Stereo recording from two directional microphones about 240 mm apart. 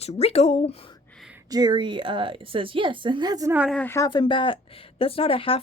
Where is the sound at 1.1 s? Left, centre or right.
Centre.